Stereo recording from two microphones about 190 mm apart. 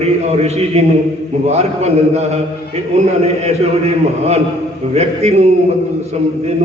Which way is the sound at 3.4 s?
35° right (ahead or behind).